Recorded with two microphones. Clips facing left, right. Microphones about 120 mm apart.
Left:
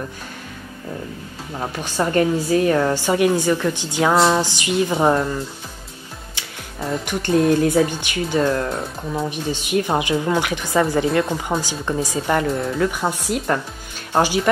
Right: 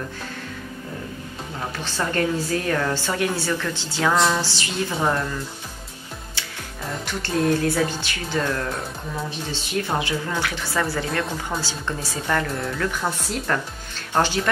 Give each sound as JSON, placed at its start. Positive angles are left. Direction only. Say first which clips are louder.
{"t": 1.8, "sound": "speech", "louder": "left 6 dB", "side_deg": 15}
{"t": 4.1, "sound": "a sound", "louder": "left 4 dB", "side_deg": 30}
{"t": 4.4, "sound": "speech", "louder": "left 7 dB", "side_deg": 15}
{"t": 4.9, "sound": "speech", "louder": "left 4 dB", "side_deg": 25}
{"t": 7.1, "sound": "speech", "louder": "left 5 dB", "side_deg": 15}